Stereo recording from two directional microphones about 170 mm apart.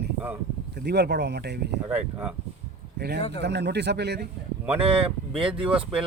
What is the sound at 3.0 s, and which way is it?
A man's voice, 75° right (ahead or behind).